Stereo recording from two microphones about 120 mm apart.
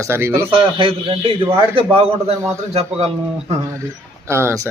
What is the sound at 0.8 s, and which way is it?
A man's voice, 50° right (ahead or behind).